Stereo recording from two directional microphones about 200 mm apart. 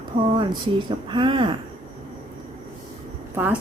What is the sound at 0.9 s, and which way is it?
Speech, 25° right (ahead or behind).